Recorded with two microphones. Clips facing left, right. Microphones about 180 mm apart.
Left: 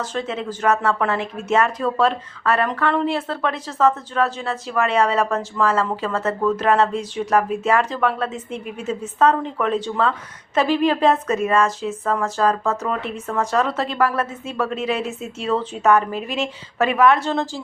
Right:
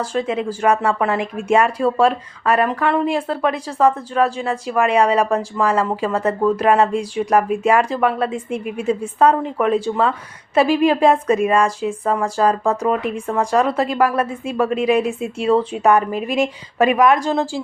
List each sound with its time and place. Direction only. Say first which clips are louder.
0.0 s speech: right 5 dB; 10° right (ahead or behind)